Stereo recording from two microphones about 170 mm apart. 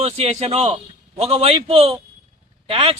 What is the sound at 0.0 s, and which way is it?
Speech, 40° right (ahead or behind).